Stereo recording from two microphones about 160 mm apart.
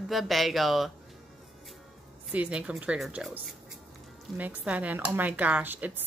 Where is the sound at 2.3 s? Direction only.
10° right (ahead or behind).